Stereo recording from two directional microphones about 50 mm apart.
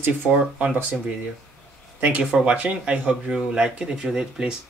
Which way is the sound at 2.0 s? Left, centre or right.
Right.